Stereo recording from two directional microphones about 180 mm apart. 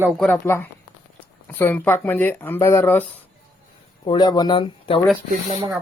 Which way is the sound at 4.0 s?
25° left (ahead or behind).